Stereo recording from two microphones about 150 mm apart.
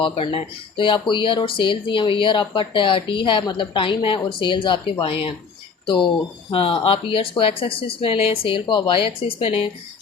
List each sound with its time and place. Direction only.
0.0 s speech: 35° left (ahead or behind)